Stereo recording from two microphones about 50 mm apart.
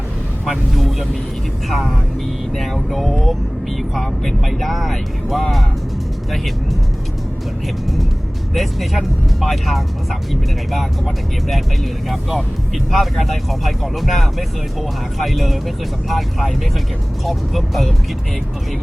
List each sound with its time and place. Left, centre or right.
0.4 s vehicle: centre
1.7 s speech: centre
8.5 s speech: centre